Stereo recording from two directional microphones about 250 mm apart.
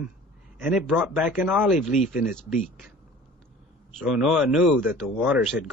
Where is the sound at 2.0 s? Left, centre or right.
Left.